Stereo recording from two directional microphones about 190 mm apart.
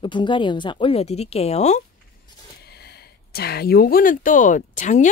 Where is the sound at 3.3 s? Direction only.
55° left (ahead or behind); by 5.1 s 40° left (ahead or behind).